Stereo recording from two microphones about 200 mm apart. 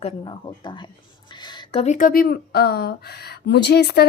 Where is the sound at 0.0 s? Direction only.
25° left (ahead or behind).